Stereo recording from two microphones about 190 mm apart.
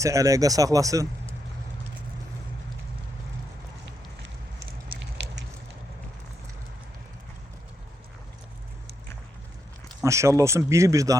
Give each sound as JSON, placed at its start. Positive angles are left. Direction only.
{"t": 0.0, "sound": "speech", "side_deg": -15}
{"t": 4.9, "sound": "a sound", "side_deg": -55}
{"t": 10.0, "sound": "speech", "side_deg": -15}